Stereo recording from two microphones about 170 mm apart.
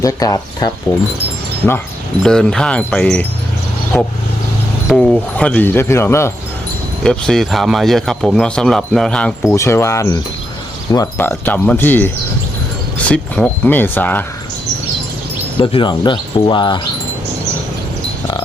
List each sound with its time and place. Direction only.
0.0 s speech: 20° left (ahead or behind)
2.2 s speech: 5° left (ahead or behind)
7.0 s speech: 5° left (ahead or behind)
9.4 s speech: 15° left (ahead or behind)
15.5 s speech: 30° left (ahead or behind)